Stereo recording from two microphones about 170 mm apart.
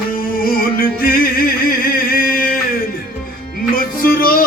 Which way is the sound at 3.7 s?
60° left (ahead or behind).